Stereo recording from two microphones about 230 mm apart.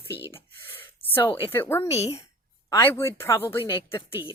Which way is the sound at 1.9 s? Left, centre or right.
Left.